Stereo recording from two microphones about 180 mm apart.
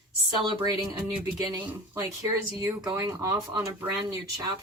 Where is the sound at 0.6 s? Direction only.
20° right (ahead or behind).